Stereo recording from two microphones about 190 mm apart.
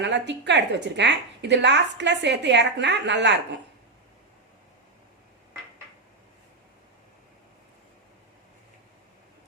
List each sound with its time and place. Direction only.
0.0 s a woman's voice: 65° right (ahead or behind)